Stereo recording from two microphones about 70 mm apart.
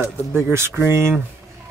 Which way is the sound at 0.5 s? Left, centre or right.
Right.